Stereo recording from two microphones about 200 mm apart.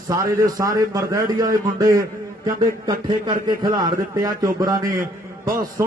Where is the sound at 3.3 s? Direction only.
20° right (ahead or behind).